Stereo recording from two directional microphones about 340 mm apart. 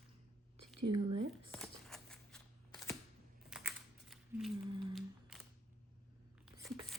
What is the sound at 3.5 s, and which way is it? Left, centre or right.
Typing, centre.